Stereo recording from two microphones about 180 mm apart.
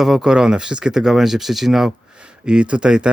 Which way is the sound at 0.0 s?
5° right (ahead or behind).